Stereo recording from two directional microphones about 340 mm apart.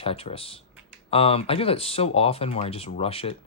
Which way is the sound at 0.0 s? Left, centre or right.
Centre.